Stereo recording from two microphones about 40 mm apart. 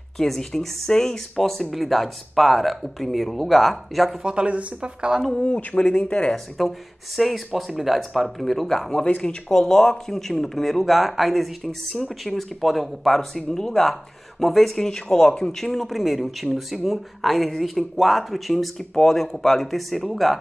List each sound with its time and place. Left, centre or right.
0.4 s speech: centre
4.2 s speech: right
4.5 s speech: right
5.7 s speech: left
6.6 s speech: centre
13.4 s speech: centre
13.7 s speech: centre